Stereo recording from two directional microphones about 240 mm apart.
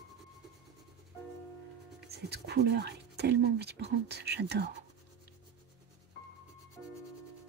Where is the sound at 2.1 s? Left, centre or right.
Right.